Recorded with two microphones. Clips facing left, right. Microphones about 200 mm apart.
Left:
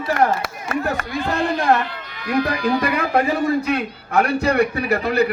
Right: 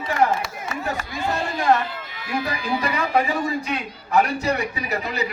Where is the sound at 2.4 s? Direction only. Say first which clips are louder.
Left 5 dB; 60° left (ahead or behind).